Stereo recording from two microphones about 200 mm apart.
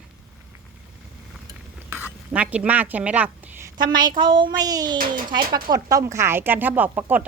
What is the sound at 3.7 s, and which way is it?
A woman's voice, 20° right (ahead or behind).